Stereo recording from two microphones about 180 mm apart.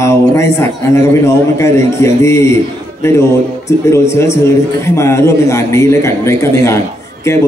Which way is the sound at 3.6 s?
15° left (ahead or behind).